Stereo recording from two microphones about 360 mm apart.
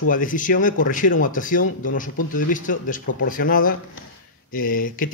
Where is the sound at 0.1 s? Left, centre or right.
Left.